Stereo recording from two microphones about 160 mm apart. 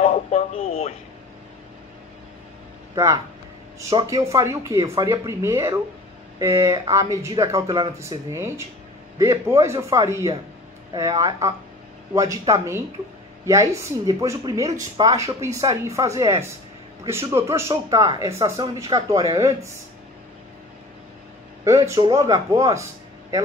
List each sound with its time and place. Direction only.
0.0 s speech: 45° left (ahead or behind)
2.9 s a man's voice: 20° right (ahead or behind)
21.6 s speech: 20° right (ahead or behind)